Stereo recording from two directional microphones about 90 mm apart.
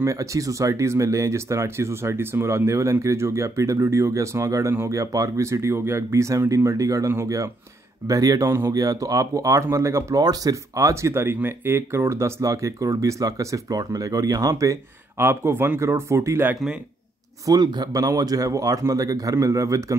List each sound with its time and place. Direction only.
0.0 s speech: 35° right (ahead or behind)
17.5 s speech: 50° right (ahead or behind)